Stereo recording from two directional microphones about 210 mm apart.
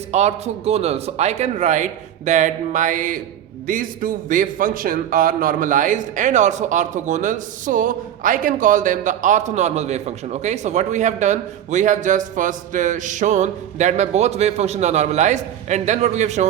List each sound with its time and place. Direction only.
0.1 s a man's voice: 30° right (ahead or behind)